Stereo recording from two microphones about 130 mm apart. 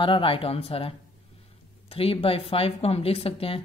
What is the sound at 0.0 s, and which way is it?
Speech, 40° left (ahead or behind).